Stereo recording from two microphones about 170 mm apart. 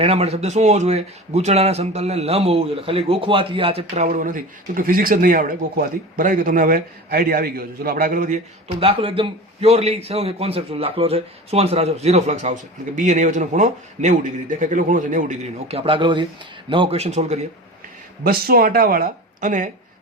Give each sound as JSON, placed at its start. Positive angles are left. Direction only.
{"t": 0.0, "sound": "speech", "side_deg": -40}
{"t": 8.8, "sound": "a man's voice", "side_deg": -35}
{"t": 18.2, "sound": "speech", "side_deg": -60}